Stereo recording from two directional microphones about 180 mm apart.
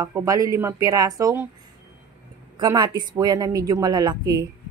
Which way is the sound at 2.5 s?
25° right (ahead or behind).